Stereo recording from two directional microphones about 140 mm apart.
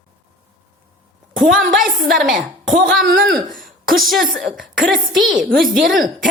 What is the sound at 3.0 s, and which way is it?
Speech, 90° right.